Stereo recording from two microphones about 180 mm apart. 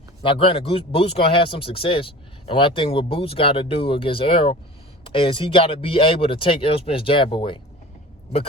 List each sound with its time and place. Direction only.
0.2 s speech: 30° left (ahead or behind)